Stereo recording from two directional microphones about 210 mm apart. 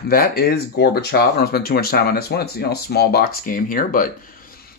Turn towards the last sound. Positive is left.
turn(degrees=40)  # may be behind; listen again after turning